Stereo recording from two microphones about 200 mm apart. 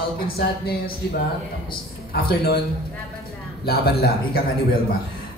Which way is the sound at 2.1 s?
50° left (ahead or behind).